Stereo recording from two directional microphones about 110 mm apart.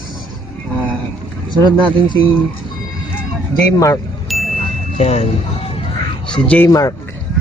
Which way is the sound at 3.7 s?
30° left (ahead or behind).